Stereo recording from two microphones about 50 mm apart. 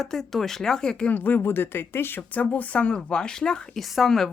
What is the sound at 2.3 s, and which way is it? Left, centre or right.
Speech, left.